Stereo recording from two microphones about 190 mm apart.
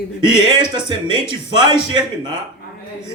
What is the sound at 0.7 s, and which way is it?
Speech, 25° right (ahead or behind).